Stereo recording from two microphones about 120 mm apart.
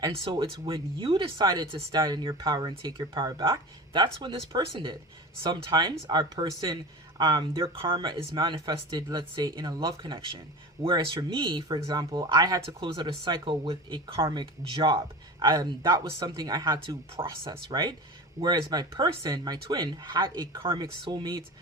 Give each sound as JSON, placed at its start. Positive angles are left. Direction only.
{"t": 0.3, "sound": "speech", "side_deg": -40}
{"t": 17.2, "sound": "speech", "side_deg": -50}
{"t": 17.7, "sound": "speech", "side_deg": -35}